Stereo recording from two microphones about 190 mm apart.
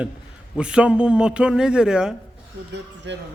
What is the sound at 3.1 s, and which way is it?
Speech, 70° right (ahead or behind).